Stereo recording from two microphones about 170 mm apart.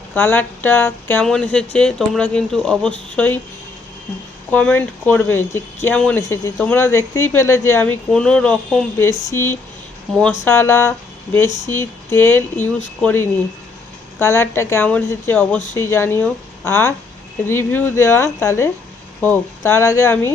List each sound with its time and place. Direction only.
0.1 s speech: 10° left (ahead or behind)
4.5 s speech: 10° left (ahead or behind)
6.2 s speech: 20° left (ahead or behind)
9.0 s speech: 15° left (ahead or behind)